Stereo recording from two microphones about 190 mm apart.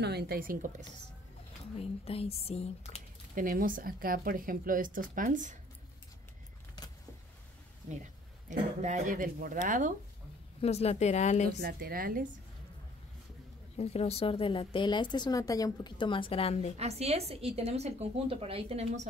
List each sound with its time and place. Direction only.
0.0 s speech: 55° right (ahead or behind)
1.8 s speech: 30° left (ahead or behind)
3.3 s speech: 45° right (ahead or behind)
8.5 s speech: 40° right (ahead or behind)
10.6 s speech: 35° left (ahead or behind)
11.6 s speech: 50° right (ahead or behind)
13.7 s a woman's voice: 35° left (ahead or behind)
16.7 s a woman's voice: 35° right (ahead or behind)